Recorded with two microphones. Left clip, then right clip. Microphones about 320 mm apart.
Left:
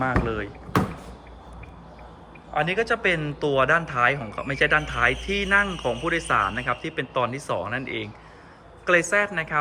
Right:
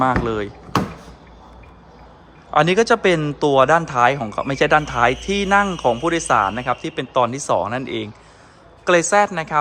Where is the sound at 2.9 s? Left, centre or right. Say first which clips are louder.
Right 7 dB; centre.